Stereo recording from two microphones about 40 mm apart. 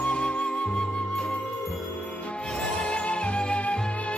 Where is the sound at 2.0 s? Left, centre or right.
Left.